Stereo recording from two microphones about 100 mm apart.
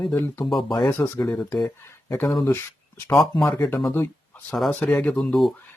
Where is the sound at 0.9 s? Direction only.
20° left (ahead or behind).